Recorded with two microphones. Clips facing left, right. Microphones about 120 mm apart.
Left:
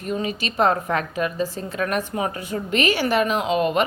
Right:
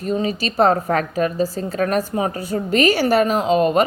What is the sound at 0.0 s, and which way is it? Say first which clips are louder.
A woman's voice: right 5 dB; 35° right (ahead or behind).